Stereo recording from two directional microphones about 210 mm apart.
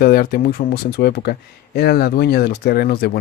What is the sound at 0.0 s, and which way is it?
Speech, 45° left (ahead or behind).